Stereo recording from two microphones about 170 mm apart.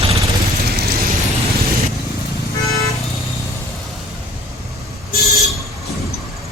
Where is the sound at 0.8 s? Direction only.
60° right (ahead or behind).